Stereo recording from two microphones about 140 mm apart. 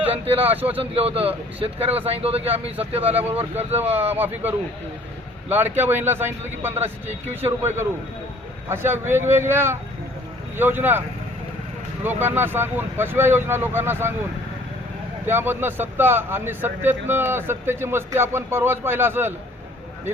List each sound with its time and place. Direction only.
0.1 s speech: 45° right (ahead or behind)
0.5 s speech: 10° right (ahead or behind)
0.8 s speech: 45° right (ahead or behind)
2.7 s speech: 10° right (ahead or behind)
3.1 s speech: 45° right (ahead or behind)
3.8 s speech: 15° right (ahead or behind)
12.0 s speech: 15° right (ahead or behind)
15.3 s speech: 15° right (ahead or behind)